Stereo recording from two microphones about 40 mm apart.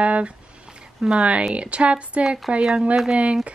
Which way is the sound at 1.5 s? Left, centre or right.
Right.